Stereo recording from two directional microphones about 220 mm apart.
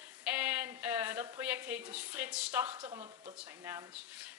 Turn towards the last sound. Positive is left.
turn(degrees=-10)  # may be behind; listen again after turning